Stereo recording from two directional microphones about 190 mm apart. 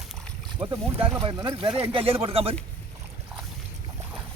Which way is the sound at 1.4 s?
25° right (ahead or behind).